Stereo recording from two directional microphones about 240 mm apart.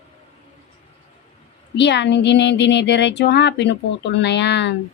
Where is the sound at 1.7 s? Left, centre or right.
Left.